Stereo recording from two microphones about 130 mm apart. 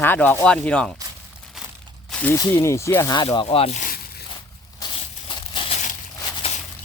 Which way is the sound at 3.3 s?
45° left (ahead or behind).